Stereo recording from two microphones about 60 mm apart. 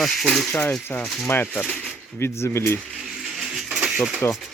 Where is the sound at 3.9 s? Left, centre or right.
Centre.